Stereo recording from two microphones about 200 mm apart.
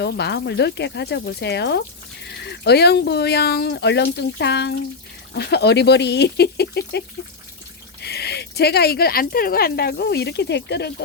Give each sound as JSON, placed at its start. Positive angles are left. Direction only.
{"t": 0.0, "sound": "speech", "side_deg": 55}
{"t": 8.0, "sound": "speech", "side_deg": 55}